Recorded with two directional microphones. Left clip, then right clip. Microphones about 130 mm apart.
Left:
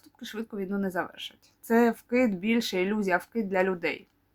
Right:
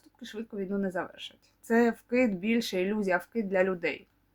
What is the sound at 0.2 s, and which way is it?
Speech, 25° left (ahead or behind).